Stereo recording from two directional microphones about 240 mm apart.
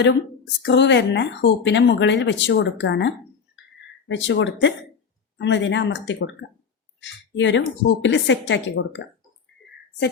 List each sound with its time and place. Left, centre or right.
0.6 s speech: left
4.1 s speech: left